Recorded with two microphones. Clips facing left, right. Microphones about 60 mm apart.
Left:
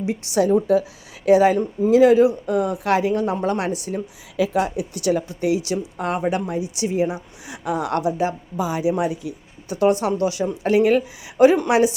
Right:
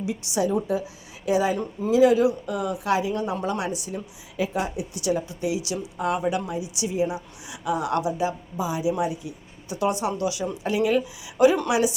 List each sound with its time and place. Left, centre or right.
0.0 s a woman's voice: left
4.4 s a woman's voice: left
9.7 s a woman's voice: left